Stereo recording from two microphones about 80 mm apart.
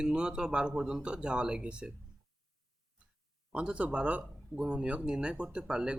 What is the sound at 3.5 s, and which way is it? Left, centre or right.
Speech, centre.